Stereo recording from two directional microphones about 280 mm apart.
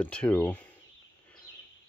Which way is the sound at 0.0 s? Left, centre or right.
Centre.